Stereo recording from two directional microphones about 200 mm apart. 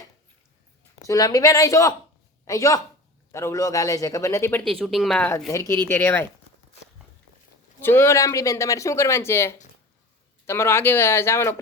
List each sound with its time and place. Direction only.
0.9 s a man's voice: 15° left (ahead or behind)
4.6 s speech: centre (ahead or behind)
7.8 s speech: 10° left (ahead or behind)